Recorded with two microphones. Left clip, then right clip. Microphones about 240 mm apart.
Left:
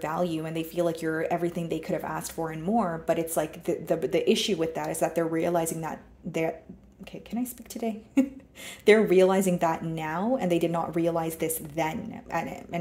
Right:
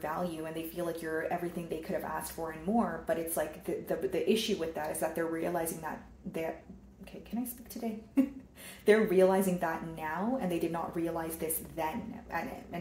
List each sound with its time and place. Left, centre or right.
0.0 s speech: left
8.8 s speech: left